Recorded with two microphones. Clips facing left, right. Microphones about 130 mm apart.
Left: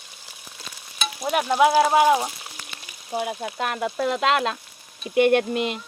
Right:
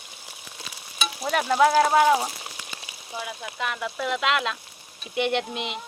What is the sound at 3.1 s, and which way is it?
Speech, 50° left (ahead or behind).